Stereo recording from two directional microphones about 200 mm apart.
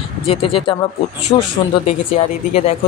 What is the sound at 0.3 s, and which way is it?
Speech, 30° left (ahead or behind).